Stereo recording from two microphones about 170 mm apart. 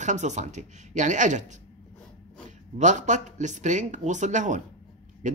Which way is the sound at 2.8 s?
45° right (ahead or behind).